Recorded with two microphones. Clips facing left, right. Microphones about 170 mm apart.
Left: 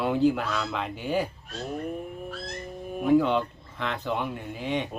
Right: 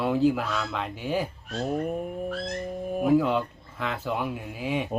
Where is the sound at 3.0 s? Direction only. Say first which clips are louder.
Left 1 dB; 5° right (ahead or behind).